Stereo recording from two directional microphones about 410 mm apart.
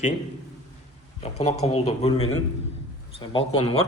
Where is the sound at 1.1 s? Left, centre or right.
Centre.